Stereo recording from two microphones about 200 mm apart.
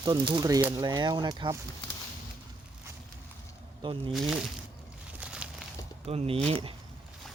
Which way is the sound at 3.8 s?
25° right (ahead or behind).